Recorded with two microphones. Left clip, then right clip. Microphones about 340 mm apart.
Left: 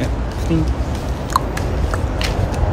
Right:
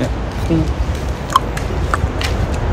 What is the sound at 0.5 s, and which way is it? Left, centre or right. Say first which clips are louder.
Speech: right 3 dB; centre.